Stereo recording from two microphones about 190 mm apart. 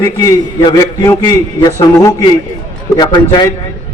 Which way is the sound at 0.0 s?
20° left (ahead or behind).